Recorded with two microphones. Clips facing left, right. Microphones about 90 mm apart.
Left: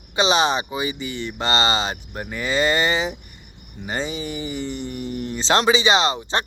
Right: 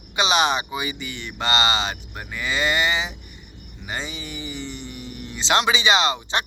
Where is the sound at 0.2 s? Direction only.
30° left (ahead or behind).